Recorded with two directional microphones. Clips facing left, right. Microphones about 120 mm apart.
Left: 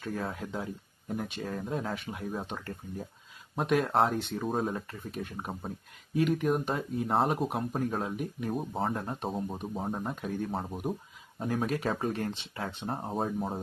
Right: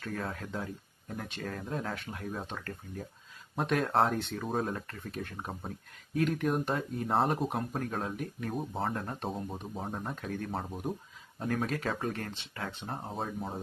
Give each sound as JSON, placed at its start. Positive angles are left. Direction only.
{"t": 0.0, "sound": "speech", "side_deg": 5}
{"t": 10.5, "sound": "speech", "side_deg": 0}
{"t": 12.9, "sound": "speech", "side_deg": 5}